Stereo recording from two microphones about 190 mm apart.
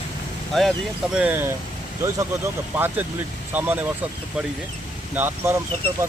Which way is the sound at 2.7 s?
10° right (ahead or behind).